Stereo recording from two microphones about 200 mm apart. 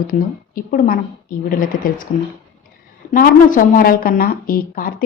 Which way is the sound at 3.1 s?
45° left (ahead or behind).